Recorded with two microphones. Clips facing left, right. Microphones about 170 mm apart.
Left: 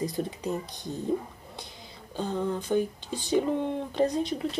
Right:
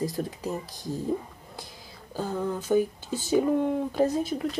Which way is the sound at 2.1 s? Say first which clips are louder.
Even; 5° right (ahead or behind).